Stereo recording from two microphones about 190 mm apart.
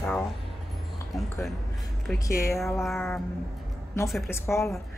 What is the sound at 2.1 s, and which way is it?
Speech, 15° left (ahead or behind).